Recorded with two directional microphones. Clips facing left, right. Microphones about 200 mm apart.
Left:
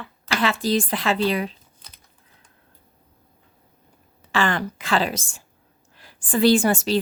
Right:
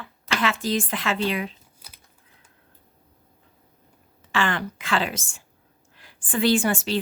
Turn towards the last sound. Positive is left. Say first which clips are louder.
# left 3 dB
turn(degrees=40)  # may be behind; listen again after turning